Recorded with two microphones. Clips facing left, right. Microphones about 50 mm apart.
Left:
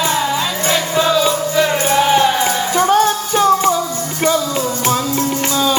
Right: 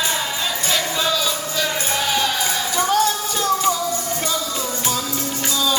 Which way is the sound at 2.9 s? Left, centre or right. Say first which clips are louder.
Left 6 dB; left.